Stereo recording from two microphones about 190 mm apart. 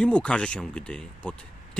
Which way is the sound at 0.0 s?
5° left (ahead or behind).